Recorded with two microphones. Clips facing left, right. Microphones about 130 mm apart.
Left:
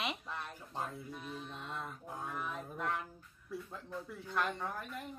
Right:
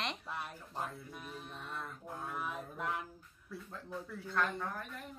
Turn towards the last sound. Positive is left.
turn(degrees=15)  # may be behind; listen again after turning